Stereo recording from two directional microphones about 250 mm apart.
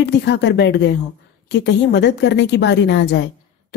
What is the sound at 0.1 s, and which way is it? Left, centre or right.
A woman's voice, left.